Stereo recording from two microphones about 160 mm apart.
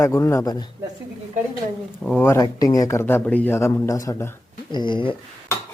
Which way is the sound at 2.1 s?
10° left (ahead or behind).